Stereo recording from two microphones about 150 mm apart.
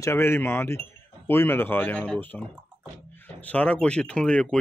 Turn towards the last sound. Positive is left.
turn(degrees=5)  # may be behind; listen again after turning